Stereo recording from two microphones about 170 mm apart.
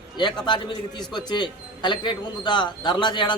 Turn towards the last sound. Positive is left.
turn(degrees=25)  # may be behind; listen again after turning